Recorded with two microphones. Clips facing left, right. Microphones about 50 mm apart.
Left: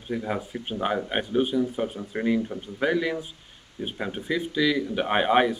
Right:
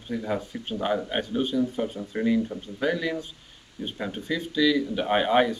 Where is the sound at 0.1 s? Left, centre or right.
Centre.